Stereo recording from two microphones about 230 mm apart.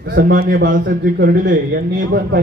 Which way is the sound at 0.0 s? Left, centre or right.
Right.